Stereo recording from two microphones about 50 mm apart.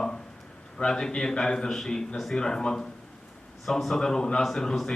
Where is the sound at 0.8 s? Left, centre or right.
Centre.